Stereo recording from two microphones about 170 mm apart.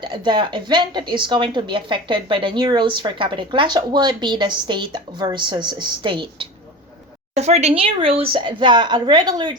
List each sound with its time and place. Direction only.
0.0 s speech: 25° right (ahead or behind)
7.3 s speech: 40° right (ahead or behind); by 9.6 s 25° right (ahead or behind)